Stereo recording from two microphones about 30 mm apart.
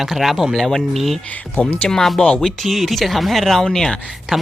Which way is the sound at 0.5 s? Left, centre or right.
Centre.